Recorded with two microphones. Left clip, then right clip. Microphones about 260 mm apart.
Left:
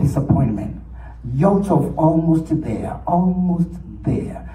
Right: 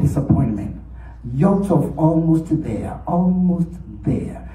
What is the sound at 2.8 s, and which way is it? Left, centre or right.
A man's voice, left.